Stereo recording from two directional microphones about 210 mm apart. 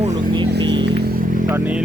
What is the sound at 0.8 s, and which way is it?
Vehicle, 50° right (ahead or behind).